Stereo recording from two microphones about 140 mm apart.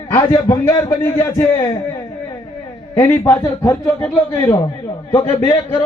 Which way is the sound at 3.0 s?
20° left (ahead or behind).